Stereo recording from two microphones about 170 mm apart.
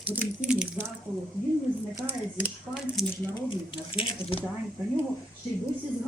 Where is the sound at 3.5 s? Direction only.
30° left (ahead or behind).